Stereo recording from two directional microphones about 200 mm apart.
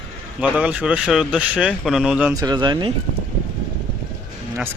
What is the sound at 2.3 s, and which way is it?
Speech, 20° right (ahead or behind).